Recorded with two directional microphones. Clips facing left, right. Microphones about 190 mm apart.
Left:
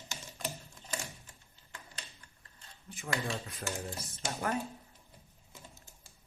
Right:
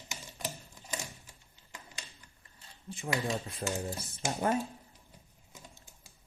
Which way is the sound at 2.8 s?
25° right (ahead or behind).